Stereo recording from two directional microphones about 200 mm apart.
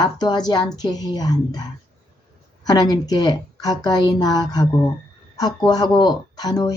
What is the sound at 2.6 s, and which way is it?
Speech, 20° left (ahead or behind).